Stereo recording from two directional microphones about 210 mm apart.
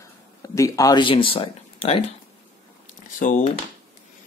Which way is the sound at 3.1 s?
40° left (ahead or behind).